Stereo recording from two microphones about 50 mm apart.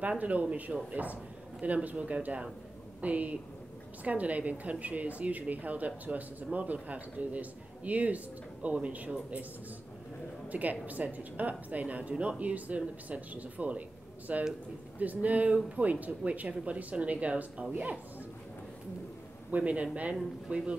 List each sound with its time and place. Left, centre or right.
0.2 s speech: right
10.5 s speech: right
19.5 s speech: right